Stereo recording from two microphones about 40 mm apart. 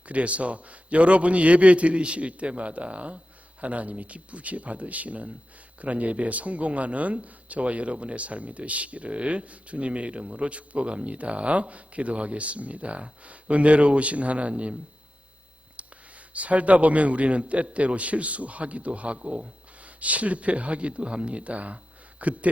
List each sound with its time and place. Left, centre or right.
0.1 s speech: right
16.3 s speech: right